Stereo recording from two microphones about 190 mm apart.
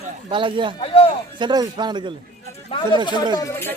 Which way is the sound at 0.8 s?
30° left (ahead or behind).